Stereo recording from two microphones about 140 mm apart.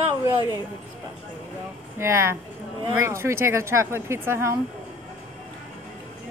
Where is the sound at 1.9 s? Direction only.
20° right (ahead or behind).